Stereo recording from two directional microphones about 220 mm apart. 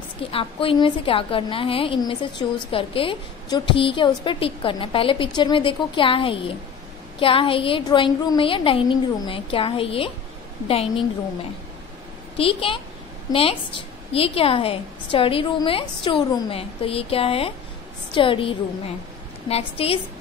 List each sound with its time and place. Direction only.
0.3 s a woman's voice: 25° left (ahead or behind)
12.4 s a woman's voice: 25° left (ahead or behind)
19.5 s a woman's voice: 25° left (ahead or behind)